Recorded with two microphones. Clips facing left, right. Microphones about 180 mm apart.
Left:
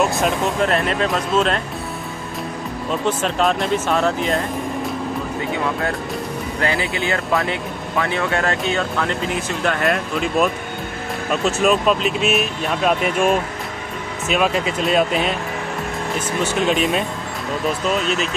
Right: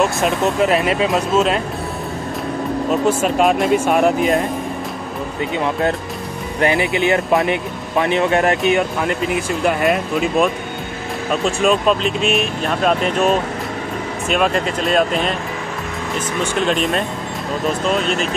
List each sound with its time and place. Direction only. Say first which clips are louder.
0.0 s speech: right 2 dB; 5° right (ahead or behind)
2.9 s speech: right 4 dB; 10° right (ahead or behind)
6.6 s speech: right 6 dB; 20° right (ahead or behind); by 15.3 s 5° left (ahead or behind)
16.6 s speech: even; 5° left (ahead or behind)